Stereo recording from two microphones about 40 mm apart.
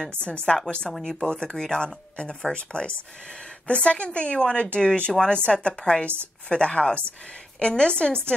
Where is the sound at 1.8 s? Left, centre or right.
Left.